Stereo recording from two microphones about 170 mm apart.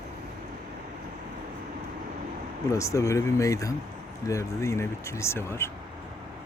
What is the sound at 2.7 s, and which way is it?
Speech, 20° left (ahead or behind).